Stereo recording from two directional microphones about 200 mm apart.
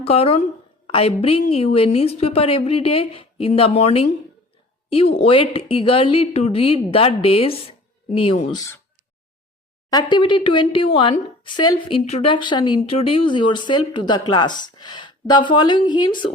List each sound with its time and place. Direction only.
0.0 s speech: 30° left (ahead or behind)
9.9 s speech: 20° left (ahead or behind)